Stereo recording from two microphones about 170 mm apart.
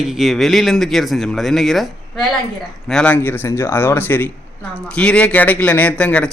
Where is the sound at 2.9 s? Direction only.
10° left (ahead or behind).